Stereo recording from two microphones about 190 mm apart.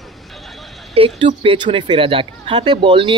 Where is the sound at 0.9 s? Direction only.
30° right (ahead or behind).